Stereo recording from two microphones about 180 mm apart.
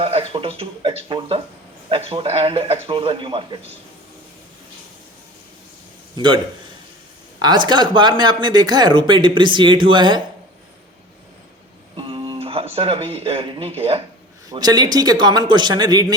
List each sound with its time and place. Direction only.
0.0 s speech: 30° right (ahead or behind)
6.1 s speech: 25° right (ahead or behind)
7.4 s speech: 25° right (ahead or behind)
11.9 s speech: 30° right (ahead or behind)
14.5 s speech: 20° right (ahead or behind)